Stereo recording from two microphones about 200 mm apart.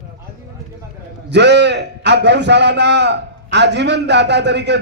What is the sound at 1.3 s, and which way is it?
A man's voice, 60° right (ahead or behind).